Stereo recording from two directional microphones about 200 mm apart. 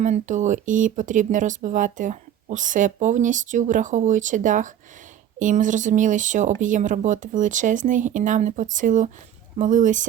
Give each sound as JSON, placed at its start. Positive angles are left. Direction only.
{"t": 0.0, "sound": "speech", "side_deg": -40}